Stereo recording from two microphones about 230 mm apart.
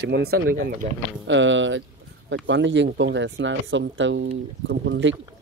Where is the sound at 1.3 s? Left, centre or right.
Right.